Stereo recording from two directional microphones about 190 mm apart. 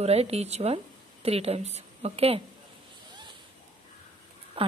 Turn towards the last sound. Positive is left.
turn(degrees=-30)  # may be behind; listen again after turning